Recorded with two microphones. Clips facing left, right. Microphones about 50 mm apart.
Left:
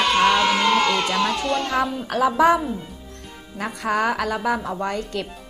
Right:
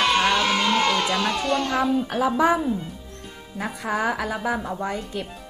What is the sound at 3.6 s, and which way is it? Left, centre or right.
A woman's voice, centre.